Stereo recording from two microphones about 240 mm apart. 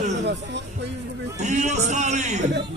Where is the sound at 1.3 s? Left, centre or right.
Right.